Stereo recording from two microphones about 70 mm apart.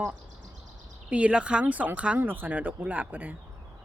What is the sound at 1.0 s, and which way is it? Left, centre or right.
Speech, centre.